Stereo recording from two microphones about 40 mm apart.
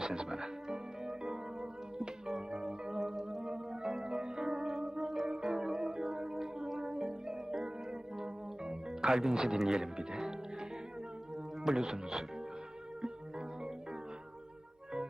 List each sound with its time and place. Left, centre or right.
0.0 s music: centre
11.6 s speech: centre